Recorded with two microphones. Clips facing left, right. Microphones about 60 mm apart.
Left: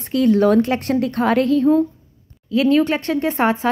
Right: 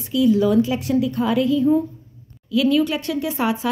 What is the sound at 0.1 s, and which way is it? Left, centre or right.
A woman's voice, left.